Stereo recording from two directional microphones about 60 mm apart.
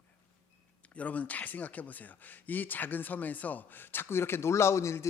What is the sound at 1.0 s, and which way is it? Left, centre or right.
Speech, left.